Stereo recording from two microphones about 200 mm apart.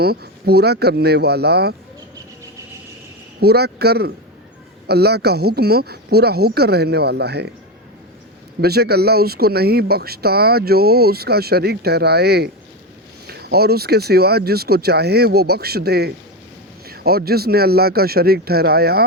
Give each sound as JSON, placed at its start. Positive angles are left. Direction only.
{"t": 0.0, "sound": "speech", "side_deg": -50}
{"t": 3.4, "sound": "speech", "side_deg": -55}
{"t": 8.6, "sound": "speech", "side_deg": -55}